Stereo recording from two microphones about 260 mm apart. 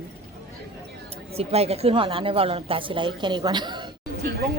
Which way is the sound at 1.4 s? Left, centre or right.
Right.